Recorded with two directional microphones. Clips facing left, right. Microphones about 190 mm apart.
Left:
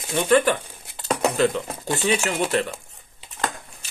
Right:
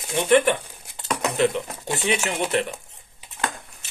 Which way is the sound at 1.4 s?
20° right (ahead or behind).